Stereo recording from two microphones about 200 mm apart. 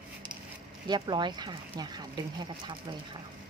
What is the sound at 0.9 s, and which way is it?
Speech, 20° right (ahead or behind).